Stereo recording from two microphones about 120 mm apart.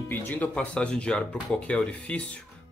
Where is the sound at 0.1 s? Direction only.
15° left (ahead or behind).